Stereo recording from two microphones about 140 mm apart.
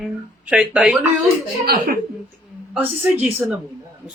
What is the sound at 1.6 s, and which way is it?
Speech, 90° right.